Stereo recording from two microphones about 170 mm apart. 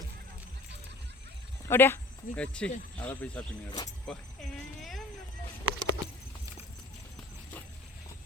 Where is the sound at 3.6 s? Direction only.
20° left (ahead or behind).